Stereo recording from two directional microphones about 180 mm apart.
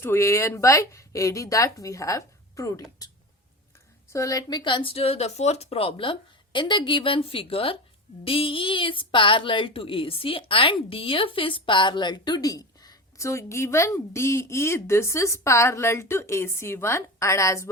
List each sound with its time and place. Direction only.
0.0 s a woman's voice: 15° left (ahead or behind)
4.1 s a woman's voice: 15° left (ahead or behind)